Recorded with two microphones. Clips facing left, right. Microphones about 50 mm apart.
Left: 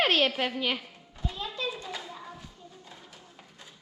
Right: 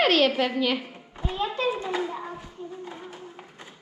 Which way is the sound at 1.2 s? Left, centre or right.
Right.